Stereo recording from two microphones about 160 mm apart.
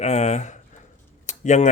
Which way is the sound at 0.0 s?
45° left (ahead or behind).